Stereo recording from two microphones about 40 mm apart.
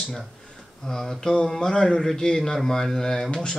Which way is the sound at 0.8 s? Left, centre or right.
Centre.